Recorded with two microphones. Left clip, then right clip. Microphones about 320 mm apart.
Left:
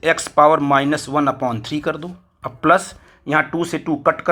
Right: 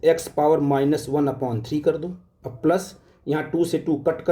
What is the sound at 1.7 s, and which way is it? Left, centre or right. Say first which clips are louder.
Speech: right 1 dB; centre.